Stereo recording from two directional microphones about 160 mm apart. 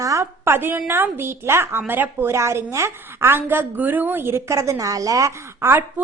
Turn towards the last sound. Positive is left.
turn(degrees=-15)  # may be behind; listen again after turning